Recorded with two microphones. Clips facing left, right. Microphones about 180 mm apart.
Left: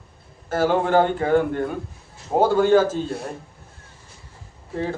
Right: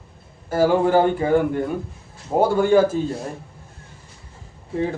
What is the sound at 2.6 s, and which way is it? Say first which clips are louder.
Speech: right 2 dB; 15° right (ahead or behind).